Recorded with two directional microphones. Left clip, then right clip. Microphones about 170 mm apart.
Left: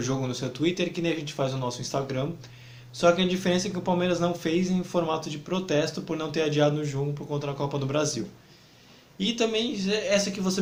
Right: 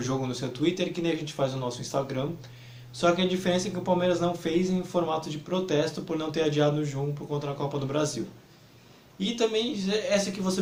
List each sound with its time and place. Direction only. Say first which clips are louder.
0.0 s speech: left 1 dB; 40° left (ahead or behind)